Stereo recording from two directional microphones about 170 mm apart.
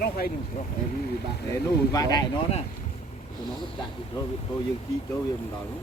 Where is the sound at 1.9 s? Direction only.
25° left (ahead or behind).